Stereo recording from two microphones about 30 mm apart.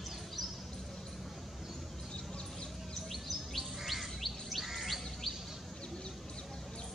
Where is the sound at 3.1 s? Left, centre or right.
Centre.